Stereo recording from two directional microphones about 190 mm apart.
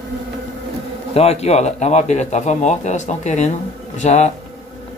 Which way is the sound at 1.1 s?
35° left (ahead or behind).